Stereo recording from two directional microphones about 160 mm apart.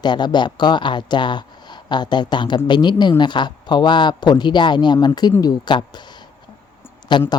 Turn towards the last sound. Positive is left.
turn(degrees=30)  # may be behind; listen again after turning